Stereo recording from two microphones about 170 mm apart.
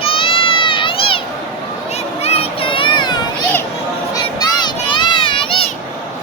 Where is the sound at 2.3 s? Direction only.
35° left (ahead or behind).